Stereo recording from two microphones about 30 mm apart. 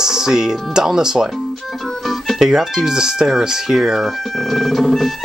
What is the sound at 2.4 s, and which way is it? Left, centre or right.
Speech, centre.